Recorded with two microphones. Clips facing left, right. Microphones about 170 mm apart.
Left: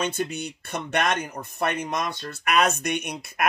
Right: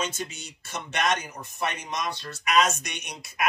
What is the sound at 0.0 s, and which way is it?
Speech, 60° left (ahead or behind).